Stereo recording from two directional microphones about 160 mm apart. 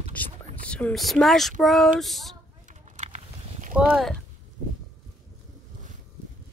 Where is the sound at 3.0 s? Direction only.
50° right (ahead or behind).